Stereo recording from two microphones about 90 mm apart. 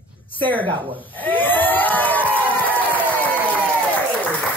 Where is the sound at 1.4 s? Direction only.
20° left (ahead or behind).